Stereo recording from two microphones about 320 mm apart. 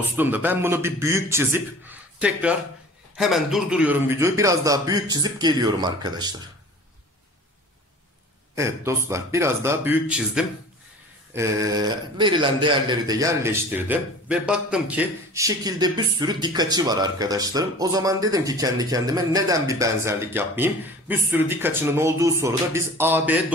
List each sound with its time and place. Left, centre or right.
0.0 s a man's voice: centre
8.5 s a man's voice: centre